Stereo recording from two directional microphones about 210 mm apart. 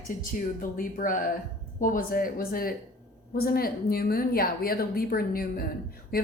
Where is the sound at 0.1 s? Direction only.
40° left (ahead or behind).